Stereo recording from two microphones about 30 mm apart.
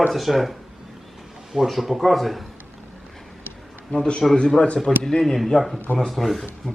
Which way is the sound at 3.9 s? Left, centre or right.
Left.